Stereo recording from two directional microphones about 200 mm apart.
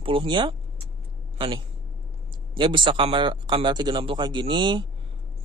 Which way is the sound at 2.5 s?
25° right (ahead or behind).